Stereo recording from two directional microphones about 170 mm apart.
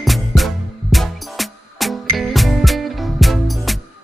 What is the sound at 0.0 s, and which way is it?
Music, centre (ahead or behind).